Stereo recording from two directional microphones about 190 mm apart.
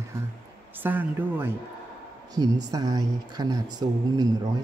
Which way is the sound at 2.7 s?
20° right (ahead or behind).